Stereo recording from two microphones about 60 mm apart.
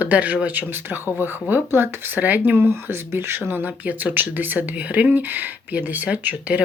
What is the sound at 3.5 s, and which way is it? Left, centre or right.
Speech, right.